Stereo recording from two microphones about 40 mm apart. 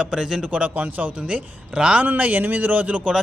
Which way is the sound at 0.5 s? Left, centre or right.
Right.